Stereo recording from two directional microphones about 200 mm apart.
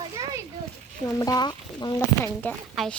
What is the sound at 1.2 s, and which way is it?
Speech, 20° left (ahead or behind).